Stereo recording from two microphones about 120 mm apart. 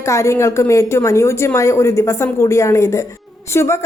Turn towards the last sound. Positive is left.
turn(degrees=20)  # may be behind; listen again after turning